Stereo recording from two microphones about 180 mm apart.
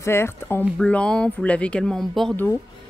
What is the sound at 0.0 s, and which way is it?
Speech, 15° left (ahead or behind).